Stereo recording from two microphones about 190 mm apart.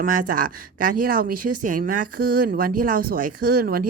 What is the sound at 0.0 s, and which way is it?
Speech, 45° right (ahead or behind).